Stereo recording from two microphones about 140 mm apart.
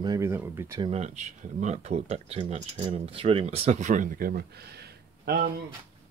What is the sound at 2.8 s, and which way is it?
Speech, 40° right (ahead or behind).